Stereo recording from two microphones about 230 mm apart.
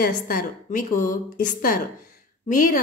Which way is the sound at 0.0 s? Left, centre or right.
Left.